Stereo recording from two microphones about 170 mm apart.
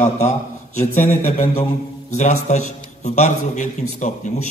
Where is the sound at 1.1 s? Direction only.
45° left (ahead or behind).